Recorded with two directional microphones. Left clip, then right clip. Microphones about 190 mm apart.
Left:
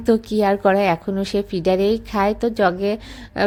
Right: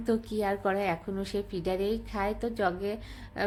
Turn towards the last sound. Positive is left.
turn(degrees=35)  # may be behind; listen again after turning